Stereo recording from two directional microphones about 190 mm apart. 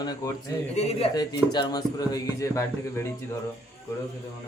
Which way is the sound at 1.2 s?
20° left (ahead or behind).